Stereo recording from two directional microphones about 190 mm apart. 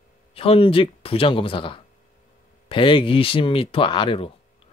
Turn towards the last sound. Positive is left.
turn(degrees=30)  # may be behind; listen again after turning